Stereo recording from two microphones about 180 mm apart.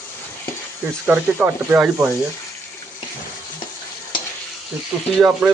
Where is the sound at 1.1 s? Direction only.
10° right (ahead or behind).